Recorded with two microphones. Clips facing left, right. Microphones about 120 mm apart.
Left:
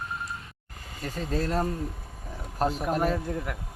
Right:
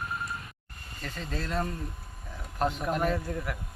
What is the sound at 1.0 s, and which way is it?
Speech, 40° left (ahead or behind).